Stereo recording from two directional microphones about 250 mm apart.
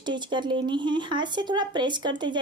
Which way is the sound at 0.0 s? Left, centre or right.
Centre.